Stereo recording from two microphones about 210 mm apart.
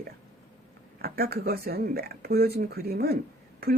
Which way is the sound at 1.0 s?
45° right (ahead or behind).